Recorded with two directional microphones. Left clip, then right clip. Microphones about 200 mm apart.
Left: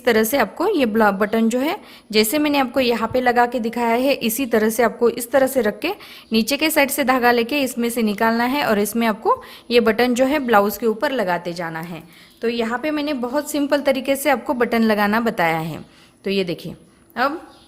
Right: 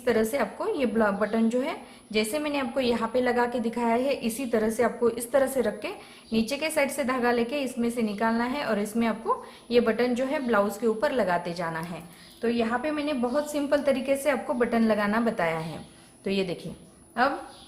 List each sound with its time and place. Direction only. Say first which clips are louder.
0.0 s a woman's voice: left 8 dB; 45° left (ahead or behind)
12.4 s a woman's voice: left 5 dB; 45° left (ahead or behind)